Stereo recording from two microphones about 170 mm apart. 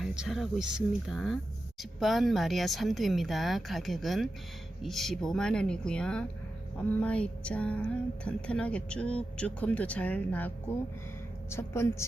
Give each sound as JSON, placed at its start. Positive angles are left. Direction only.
{"t": 0.0, "sound": "speech", "side_deg": -5}
{"t": 6.7, "sound": "music", "side_deg": 5}
{"t": 11.5, "sound": "music", "side_deg": 15}